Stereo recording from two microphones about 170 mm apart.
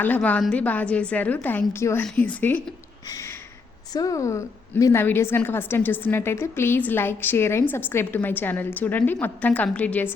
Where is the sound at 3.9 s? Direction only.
20° left (ahead or behind).